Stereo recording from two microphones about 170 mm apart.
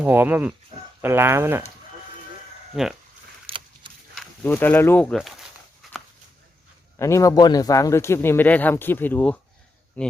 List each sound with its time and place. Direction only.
0.0 s speech: 10° right (ahead or behind)
2.8 s speech: 5° right (ahead or behind)
3.4 s keys jangling: 30° right (ahead or behind)
4.4 s speech: 10° left (ahead or behind)
5.8 s walk: centre (ahead or behind)
7.0 s speech: 20° left (ahead or behind)